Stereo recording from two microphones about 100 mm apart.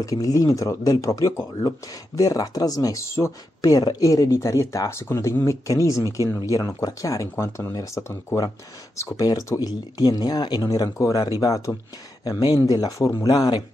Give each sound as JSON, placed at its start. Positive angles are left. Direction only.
{"t": 0.0, "sound": "speech", "side_deg": 35}